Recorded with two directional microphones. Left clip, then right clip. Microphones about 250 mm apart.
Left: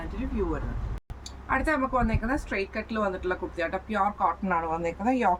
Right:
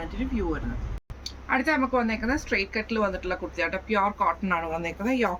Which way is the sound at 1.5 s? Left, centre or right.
Centre.